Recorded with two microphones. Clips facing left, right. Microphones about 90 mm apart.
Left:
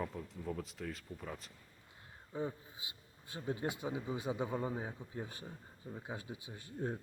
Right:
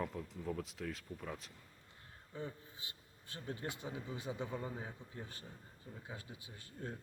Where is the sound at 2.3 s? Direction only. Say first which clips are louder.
Left 6 dB; 15° left (ahead or behind).